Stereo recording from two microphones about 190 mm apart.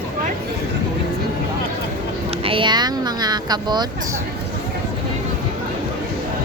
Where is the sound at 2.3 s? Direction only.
30° right (ahead or behind).